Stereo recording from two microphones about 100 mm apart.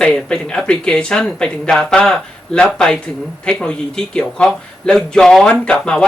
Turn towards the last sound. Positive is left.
turn(degrees=10)  # may be behind; listen again after turning